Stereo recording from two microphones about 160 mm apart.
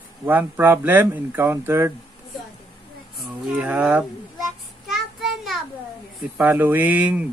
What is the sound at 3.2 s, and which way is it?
Child singing, 5° right (ahead or behind).